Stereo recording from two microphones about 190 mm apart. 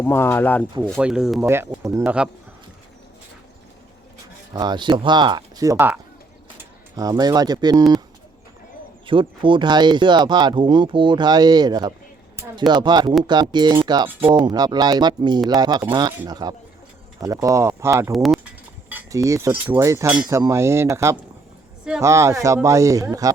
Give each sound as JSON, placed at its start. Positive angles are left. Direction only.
{"t": 0.0, "sound": "speech", "side_deg": 10}
{"t": 0.8, "sound": "speech", "side_deg": -5}
{"t": 4.5, "sound": "speech", "side_deg": -20}
{"t": 9.0, "sound": "speech", "side_deg": -25}
{"t": 18.1, "sound": "speech", "side_deg": 0}
{"t": 18.9, "sound": "speech", "side_deg": -15}